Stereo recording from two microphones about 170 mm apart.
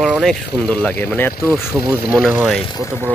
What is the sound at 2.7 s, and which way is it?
Speech, 15° left (ahead or behind).